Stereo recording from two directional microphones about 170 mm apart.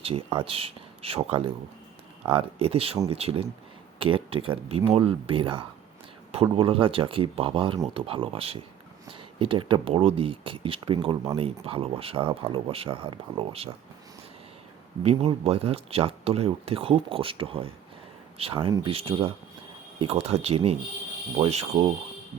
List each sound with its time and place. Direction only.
0.3 s speech: 30° right (ahead or behind)
15.0 s speech: 35° right (ahead or behind)